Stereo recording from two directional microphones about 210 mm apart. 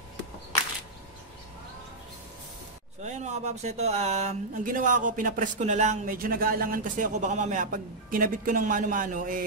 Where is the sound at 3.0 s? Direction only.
35° right (ahead or behind).